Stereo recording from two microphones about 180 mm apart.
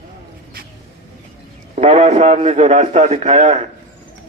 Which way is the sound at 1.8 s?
40° right (ahead or behind).